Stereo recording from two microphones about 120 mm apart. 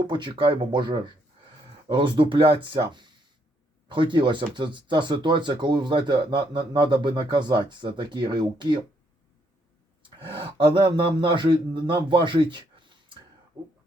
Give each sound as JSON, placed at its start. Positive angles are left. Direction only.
{"t": 0.1, "sound": "speech", "side_deg": -40}
{"t": 10.2, "sound": "speech", "side_deg": -45}